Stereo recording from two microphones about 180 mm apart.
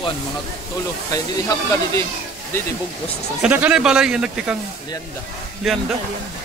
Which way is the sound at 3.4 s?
5° right (ahead or behind).